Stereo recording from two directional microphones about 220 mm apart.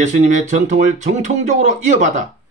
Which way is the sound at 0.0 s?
35° right (ahead or behind).